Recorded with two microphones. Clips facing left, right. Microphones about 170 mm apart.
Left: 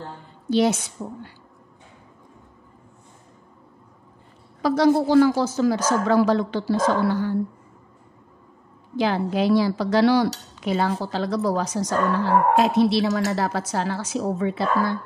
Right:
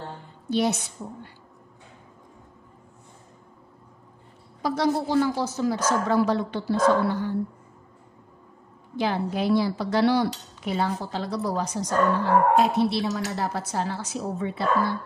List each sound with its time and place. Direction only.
0.5 s a woman's voice: 90° left
4.6 s speech: 90° left
8.9 s speech: 90° left